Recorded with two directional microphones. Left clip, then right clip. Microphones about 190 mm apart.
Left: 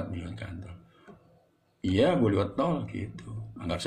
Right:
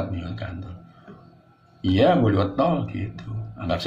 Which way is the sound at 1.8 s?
45° left (ahead or behind).